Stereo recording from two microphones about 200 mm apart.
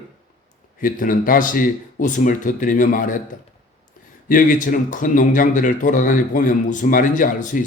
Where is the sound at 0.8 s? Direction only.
45° left (ahead or behind).